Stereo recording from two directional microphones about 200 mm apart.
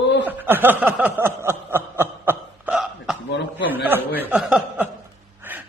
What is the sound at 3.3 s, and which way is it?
Chuckle, 60° left (ahead or behind).